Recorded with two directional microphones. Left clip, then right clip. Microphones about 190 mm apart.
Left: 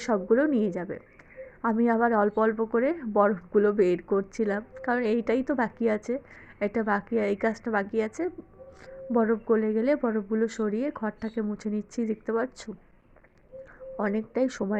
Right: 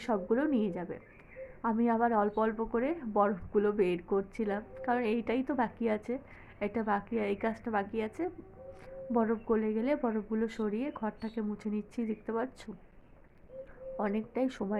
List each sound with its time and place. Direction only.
0.0 s speech: 25° left (ahead or behind)
13.9 s speech: 25° left (ahead or behind)